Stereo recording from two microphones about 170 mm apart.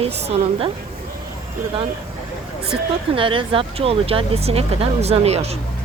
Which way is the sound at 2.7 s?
30° right (ahead or behind).